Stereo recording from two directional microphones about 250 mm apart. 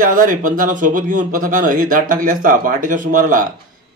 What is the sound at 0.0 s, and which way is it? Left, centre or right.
Speech, right.